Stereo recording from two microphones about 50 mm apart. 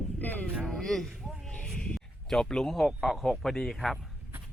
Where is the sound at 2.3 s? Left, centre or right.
Centre.